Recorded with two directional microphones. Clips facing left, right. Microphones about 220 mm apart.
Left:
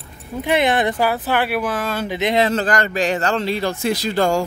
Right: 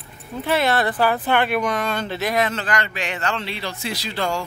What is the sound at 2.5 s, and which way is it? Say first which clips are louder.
A man's voice: left 6 dB; 45° left (ahead or behind).